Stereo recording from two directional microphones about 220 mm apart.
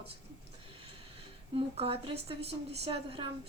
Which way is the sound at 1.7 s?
25° right (ahead or behind).